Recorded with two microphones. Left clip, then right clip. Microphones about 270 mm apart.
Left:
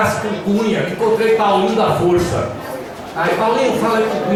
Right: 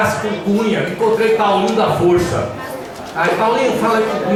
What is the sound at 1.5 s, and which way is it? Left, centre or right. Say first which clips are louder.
Speech: even; right.